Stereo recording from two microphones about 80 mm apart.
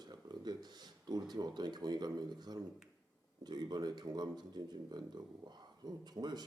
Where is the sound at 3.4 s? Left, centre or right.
Right.